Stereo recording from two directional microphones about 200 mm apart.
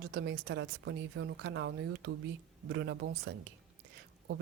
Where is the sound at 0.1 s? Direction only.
60° right (ahead or behind).